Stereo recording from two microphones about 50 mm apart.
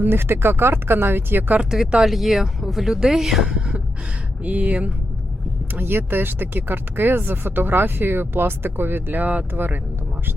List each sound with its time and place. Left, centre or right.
0.0 s speech: right
2.0 s speech: centre
4.4 s speech: right
5.7 s speech: right